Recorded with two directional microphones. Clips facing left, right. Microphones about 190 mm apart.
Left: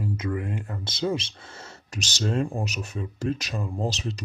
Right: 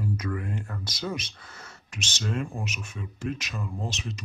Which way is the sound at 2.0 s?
40° left (ahead or behind).